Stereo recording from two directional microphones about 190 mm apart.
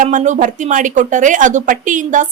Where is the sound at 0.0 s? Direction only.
40° right (ahead or behind).